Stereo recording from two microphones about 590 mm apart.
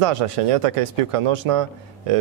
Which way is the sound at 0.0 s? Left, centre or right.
Right.